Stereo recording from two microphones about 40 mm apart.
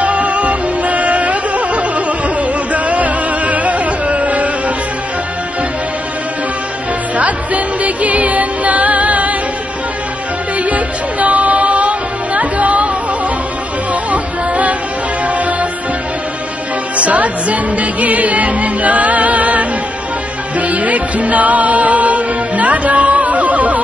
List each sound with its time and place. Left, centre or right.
0.0 s music: right
7.2 s music: right
10.6 s music: right
14.1 s music: right
16.9 s music: right